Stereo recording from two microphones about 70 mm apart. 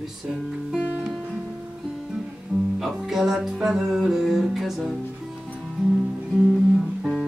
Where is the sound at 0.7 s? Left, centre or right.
Centre.